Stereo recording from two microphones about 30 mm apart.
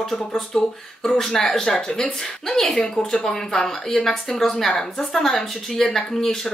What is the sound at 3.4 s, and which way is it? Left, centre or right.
A woman's voice, centre.